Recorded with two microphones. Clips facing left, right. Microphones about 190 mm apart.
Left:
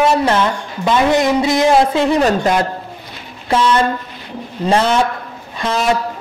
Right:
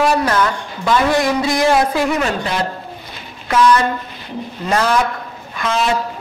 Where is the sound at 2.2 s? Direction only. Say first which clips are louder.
Left 6 dB; 40° left (ahead or behind).